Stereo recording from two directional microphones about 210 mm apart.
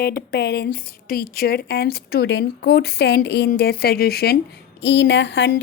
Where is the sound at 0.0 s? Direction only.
45° left (ahead or behind).